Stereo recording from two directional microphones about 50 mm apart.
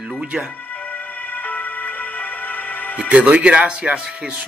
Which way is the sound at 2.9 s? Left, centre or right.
Right.